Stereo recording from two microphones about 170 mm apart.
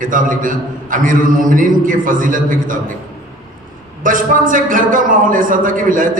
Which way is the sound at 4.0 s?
50° right (ahead or behind).